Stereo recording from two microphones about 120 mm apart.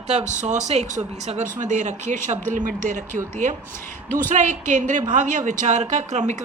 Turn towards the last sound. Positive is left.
turn(degrees=-75)  # may be behind; listen again after turning